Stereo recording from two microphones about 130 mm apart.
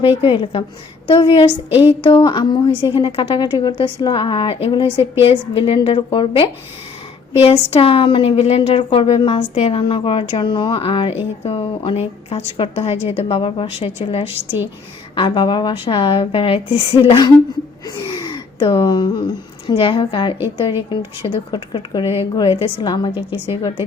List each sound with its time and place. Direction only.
0.2 s a woman's voice: 40° left (ahead or behind)
2.9 s a woman's voice: 45° left (ahead or behind)
15.1 s a woman's voice: 40° left (ahead or behind)